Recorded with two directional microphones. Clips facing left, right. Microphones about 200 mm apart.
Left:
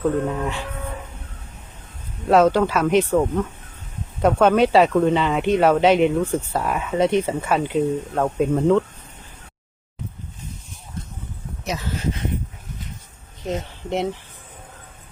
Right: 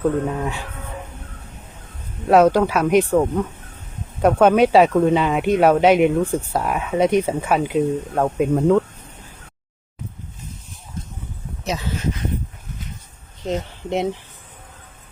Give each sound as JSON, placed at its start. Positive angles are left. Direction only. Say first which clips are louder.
{"t": 0.3, "sound": "speech", "louder": "even", "side_deg": -10}
{"t": 2.2, "sound": "speech", "louder": "right 2 dB", "side_deg": -10}
{"t": 11.6, "sound": "a sound", "louder": "right 2 dB", "side_deg": -25}
{"t": 13.9, "sound": "speech", "louder": "right 2 dB", "side_deg": -15}